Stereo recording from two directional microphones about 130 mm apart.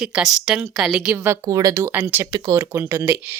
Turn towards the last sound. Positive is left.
turn(degrees=-15)  # may be behind; listen again after turning